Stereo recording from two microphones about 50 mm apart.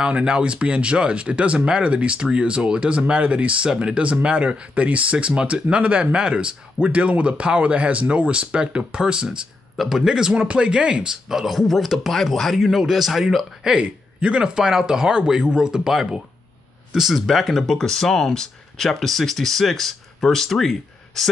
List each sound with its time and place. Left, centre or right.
0.0 s speech: centre
9.8 s speech: centre
13.7 s speech: right; by 21.3 s centre